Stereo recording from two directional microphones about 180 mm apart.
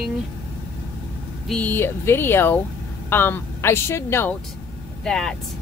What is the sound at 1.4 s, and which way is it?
Speech, 5° left (ahead or behind).